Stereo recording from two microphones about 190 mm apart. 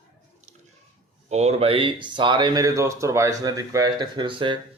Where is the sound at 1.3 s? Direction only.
35° right (ahead or behind).